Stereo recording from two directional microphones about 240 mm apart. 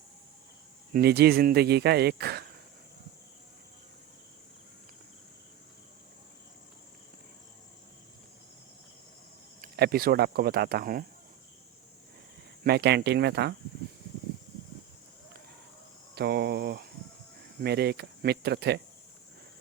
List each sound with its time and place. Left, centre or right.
0.9 s speech: right
9.6 s speech: right
12.6 s speech: right
16.1 s speech: right